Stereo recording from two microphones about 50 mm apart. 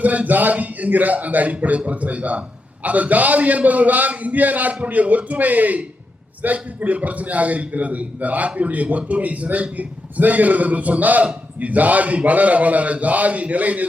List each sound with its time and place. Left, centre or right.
0.0 s a man's voice: right